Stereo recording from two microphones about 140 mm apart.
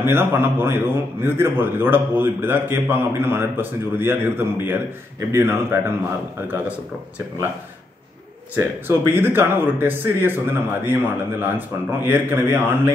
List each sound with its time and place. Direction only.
0.0 s a man's voice: 15° right (ahead or behind)
8.5 s a man's voice: 15° right (ahead or behind)